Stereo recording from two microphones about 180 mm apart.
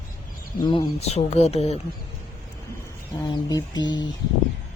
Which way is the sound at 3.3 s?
20° left (ahead or behind).